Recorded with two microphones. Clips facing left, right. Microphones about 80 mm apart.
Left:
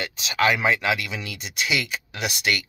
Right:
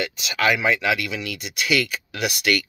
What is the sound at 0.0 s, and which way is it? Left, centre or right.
Speech, left.